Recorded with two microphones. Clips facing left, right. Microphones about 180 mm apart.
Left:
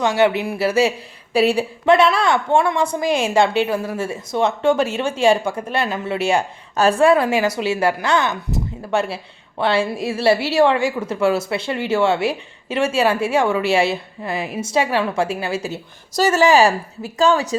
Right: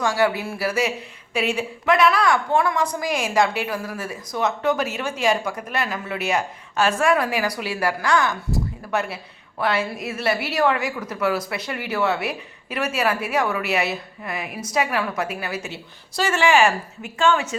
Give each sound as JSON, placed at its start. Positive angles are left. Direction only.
{"t": 0.0, "sound": "speech", "side_deg": 20}
{"t": 15.7, "sound": "speech", "side_deg": 40}